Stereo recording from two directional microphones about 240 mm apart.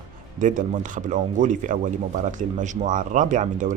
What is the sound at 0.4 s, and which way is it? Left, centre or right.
Speech, right.